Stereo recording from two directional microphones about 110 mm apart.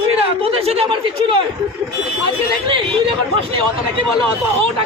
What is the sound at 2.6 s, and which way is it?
Speech, 55° right (ahead or behind).